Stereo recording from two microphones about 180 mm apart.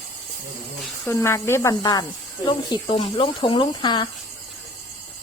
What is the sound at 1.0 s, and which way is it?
Speech, 15° left (ahead or behind).